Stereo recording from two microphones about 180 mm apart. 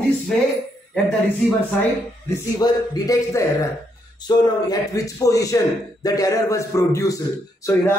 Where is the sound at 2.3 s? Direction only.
20° left (ahead or behind).